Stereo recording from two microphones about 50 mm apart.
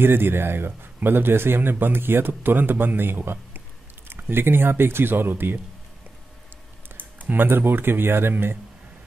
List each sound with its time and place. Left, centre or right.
0.0 s a man's voice: right
7.2 s a man's voice: right